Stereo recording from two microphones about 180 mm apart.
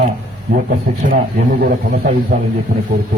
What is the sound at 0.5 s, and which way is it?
A man's voice, 55° right (ahead or behind).